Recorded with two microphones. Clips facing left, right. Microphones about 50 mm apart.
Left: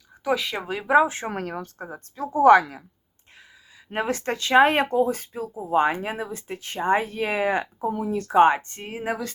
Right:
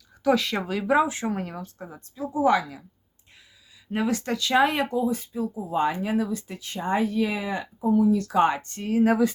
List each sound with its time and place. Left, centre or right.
0.3 s speech: centre
0.7 s speech: left
1.0 s speech: left
1.3 s speech: left
3.9 s speech: left
5.5 s speech: left
8.1 s speech: left